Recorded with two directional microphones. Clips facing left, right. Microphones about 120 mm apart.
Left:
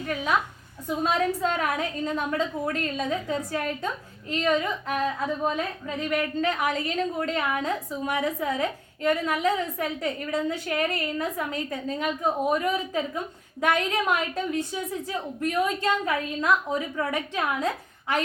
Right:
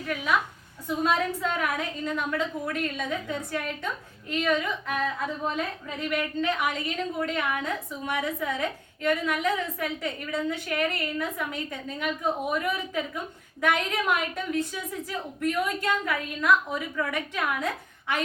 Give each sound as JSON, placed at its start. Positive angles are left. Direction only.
{"t": 0.0, "sound": "a woman's voice", "side_deg": 30}